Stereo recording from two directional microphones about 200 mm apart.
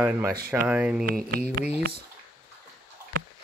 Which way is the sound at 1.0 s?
45° right (ahead or behind).